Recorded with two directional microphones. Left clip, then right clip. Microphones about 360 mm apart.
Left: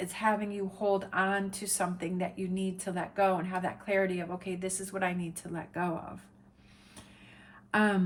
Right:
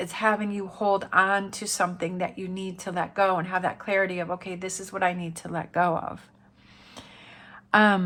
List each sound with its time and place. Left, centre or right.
0.0 s speech: centre
7.7 s speech: centre